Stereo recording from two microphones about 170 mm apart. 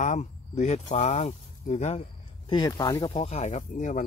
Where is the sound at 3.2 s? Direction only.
40° left (ahead or behind).